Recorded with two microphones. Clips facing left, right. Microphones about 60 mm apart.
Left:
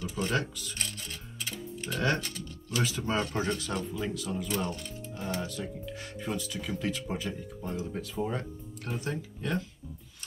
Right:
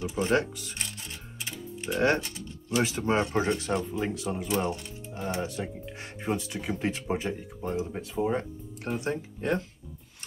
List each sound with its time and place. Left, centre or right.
0.0 s speech: right
0.7 s music: right
3.3 s speech: right
7.8 s speech: centre; by 9.6 s right